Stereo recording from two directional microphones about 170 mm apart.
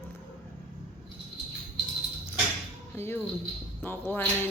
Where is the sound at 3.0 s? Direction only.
15° left (ahead or behind).